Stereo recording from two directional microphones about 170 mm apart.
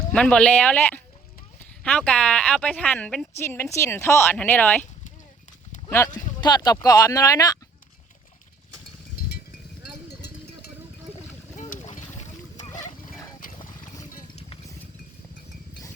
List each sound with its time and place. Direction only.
0.1 s a woman's voice: 5° left (ahead or behind)
6.1 s speech: 25° left (ahead or behind)
11.5 s boat: 45° left (ahead or behind)
13.6 s a sound: 20° left (ahead or behind)